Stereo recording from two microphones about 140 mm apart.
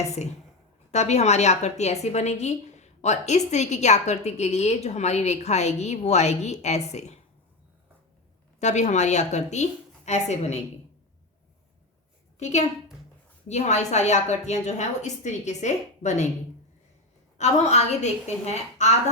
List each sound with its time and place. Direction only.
0.0 s a woman's voice: 50° left (ahead or behind)
8.5 s a woman's voice: 55° left (ahead or behind)
12.4 s a woman's voice: 55° left (ahead or behind)
17.3 s a woman's voice: 55° left (ahead or behind)